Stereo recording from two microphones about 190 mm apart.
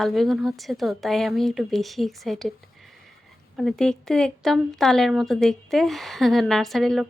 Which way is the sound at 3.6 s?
Centre (ahead or behind).